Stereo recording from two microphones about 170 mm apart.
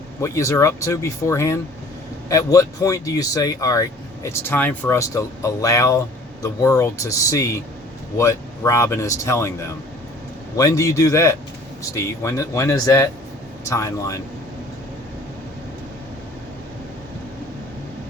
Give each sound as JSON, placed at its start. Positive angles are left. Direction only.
{"t": 0.2, "sound": "speech", "side_deg": 15}
{"t": 10.6, "sound": "speech", "side_deg": 20}